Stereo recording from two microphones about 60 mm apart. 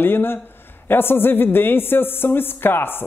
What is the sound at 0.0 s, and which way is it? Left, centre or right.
Speech, left.